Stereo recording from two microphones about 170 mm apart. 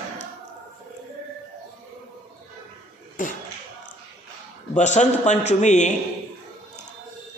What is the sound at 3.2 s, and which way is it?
Speech, 50° left (ahead or behind).